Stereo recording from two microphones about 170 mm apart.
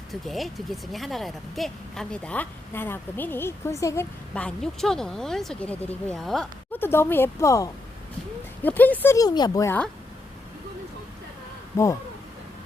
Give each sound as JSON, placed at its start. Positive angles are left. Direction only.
{"t": 0.1, "sound": "speech", "side_deg": 0}
{"t": 4.4, "sound": "speech", "side_deg": 5}
{"t": 6.7, "sound": "speech", "side_deg": 15}
{"t": 11.7, "sound": "speech", "side_deg": 20}